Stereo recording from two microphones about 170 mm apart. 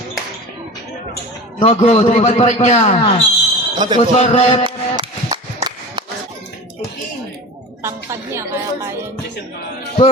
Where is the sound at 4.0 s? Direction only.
35° left (ahead or behind).